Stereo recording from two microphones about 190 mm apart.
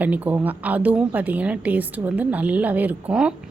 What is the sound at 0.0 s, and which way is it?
Speech, 10° right (ahead or behind).